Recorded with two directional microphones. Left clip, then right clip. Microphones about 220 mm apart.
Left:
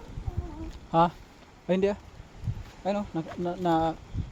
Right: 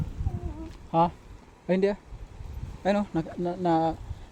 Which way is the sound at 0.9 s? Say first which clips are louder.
Left 1 dB; 5° right (ahead or behind).